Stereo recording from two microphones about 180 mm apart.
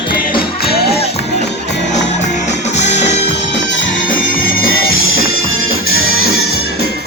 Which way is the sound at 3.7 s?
90° left.